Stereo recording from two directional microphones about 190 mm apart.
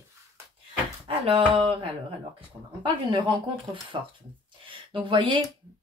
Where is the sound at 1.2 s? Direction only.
30° right (ahead or behind).